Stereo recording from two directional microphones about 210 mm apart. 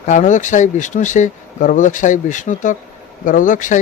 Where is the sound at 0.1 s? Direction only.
35° left (ahead or behind).